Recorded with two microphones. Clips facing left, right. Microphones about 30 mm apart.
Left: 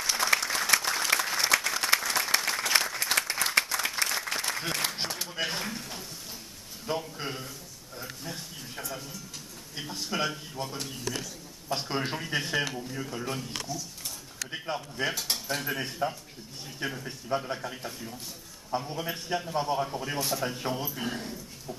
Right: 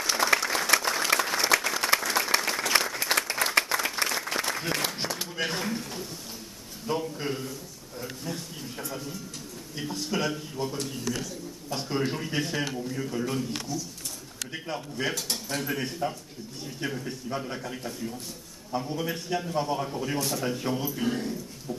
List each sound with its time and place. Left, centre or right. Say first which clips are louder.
0.1 s applause: right 2 dB; centre
3.7 s applause: right 3 dB; right
4.1 s applause: right 2 dB; centre
5.3 s speech: right 2 dB; centre
7.2 s speech: right 4 dB; centre
10.7 s speech: right 3 dB; centre
11.7 s speech: right 1 dB; left
12.2 s speech: even; centre